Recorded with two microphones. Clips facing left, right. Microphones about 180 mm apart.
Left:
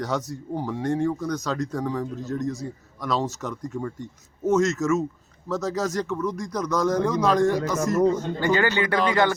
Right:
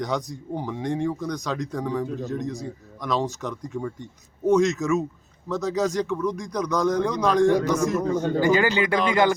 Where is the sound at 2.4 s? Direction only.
15° right (ahead or behind).